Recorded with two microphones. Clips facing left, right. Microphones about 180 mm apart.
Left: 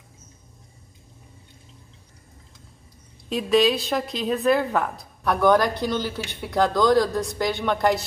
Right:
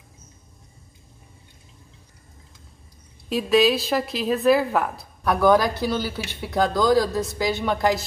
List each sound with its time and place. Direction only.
3.3 s a woman's voice: centre (ahead or behind)